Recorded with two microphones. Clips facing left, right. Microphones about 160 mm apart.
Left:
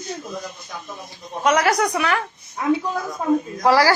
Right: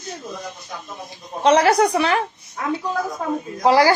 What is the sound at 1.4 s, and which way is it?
Speech, 30° right (ahead or behind).